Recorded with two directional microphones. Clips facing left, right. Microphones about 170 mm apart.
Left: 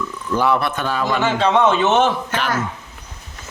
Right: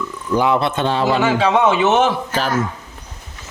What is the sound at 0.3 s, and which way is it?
Speech, 15° right (ahead or behind).